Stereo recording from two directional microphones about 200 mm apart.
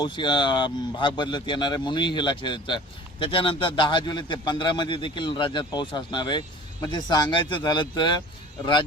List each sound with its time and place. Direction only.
0.0 s speech: 25° left (ahead or behind)